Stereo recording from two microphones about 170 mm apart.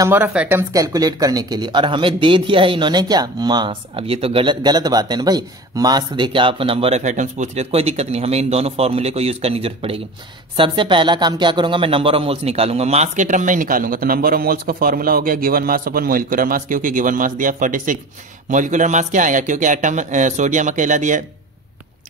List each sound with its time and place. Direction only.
0.0 s speech: 10° right (ahead or behind); by 21.2 s 45° right (ahead or behind)